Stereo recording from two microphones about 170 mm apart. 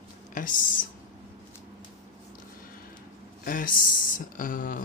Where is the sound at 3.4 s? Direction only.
55° left (ahead or behind).